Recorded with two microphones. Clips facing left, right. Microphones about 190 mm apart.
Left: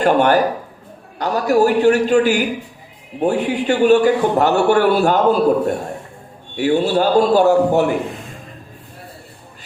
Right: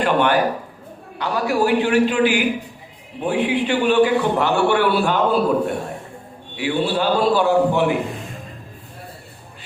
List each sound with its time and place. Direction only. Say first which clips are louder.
0.0 s a man's voice: left 3 dB; 45° left (ahead or behind)